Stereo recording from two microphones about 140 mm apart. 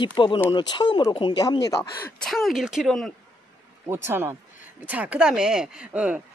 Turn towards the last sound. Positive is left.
turn(degrees=-10)  # may be behind; listen again after turning